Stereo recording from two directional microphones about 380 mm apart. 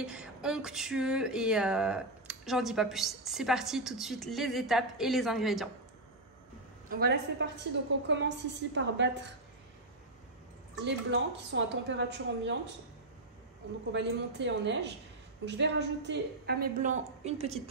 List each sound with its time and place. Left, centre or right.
0.0 s a sound: centre
6.9 s a woman's voice: right
10.9 s a woman's voice: right
13.9 s a woman's voice: right